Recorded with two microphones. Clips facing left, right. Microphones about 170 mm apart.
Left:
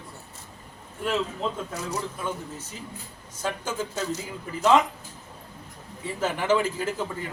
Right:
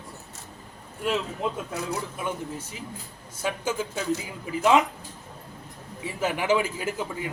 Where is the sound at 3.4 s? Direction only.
10° right (ahead or behind).